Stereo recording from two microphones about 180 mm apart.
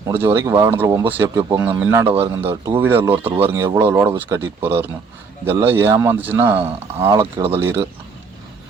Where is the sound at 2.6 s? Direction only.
10° right (ahead or behind).